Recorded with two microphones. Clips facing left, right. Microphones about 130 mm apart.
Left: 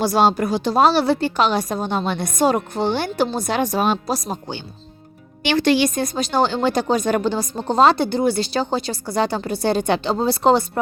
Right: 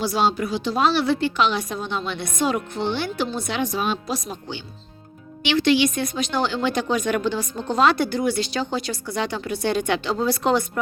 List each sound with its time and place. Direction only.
0.0 s a woman's voice: 45° left (ahead or behind); by 10.7 s 30° left (ahead or behind)